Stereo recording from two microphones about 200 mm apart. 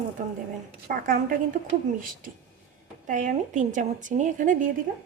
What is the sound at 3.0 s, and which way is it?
Speech, 40° right (ahead or behind).